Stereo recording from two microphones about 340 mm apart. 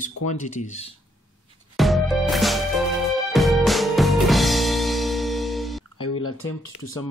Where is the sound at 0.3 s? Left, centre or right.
Left.